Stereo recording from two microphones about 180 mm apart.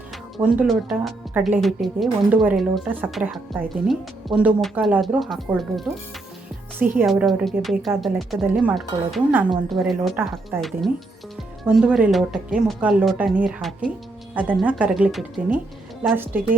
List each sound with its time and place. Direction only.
0.4 s a woman's voice: 5° right (ahead or behind)
6.7 s a woman's voice: 10° right (ahead or behind)
7.0 s a woman's voice: centre (ahead or behind)